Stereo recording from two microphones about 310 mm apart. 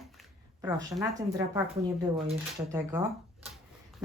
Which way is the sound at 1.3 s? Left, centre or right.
Centre.